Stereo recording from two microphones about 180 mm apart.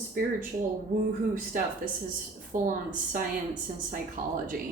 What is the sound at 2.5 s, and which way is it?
Speech, 45° right (ahead or behind).